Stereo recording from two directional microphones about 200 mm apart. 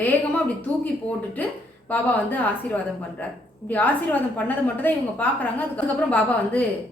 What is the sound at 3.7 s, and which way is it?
A woman's voice, 10° left (ahead or behind).